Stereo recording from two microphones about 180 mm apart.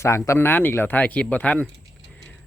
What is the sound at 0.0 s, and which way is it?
Speech, 15° left (ahead or behind).